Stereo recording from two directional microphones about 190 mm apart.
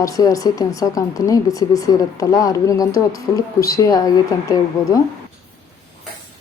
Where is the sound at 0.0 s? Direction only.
15° left (ahead or behind).